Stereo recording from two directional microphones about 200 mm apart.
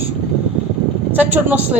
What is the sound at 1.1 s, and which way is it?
Speech, 10° right (ahead or behind).